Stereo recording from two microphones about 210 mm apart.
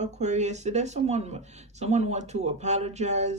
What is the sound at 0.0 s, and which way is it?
Speech, 35° right (ahead or behind).